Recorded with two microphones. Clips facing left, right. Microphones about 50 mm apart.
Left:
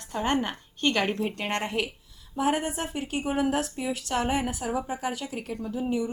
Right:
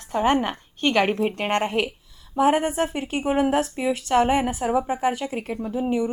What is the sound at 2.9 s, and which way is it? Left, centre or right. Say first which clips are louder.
Speech: right 5 dB; right.